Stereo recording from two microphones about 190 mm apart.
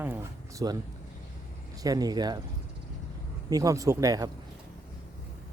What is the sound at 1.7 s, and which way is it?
Speech, 20° right (ahead or behind).